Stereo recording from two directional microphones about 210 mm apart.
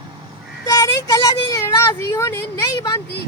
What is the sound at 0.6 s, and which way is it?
Speech, 15° left (ahead or behind).